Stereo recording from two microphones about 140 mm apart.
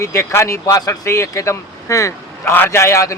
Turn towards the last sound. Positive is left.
turn(degrees=20)  # may be behind; listen again after turning